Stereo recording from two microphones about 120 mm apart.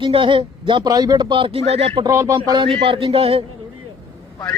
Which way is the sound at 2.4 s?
40° right (ahead or behind).